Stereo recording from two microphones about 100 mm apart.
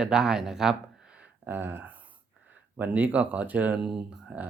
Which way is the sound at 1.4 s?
20° right (ahead or behind).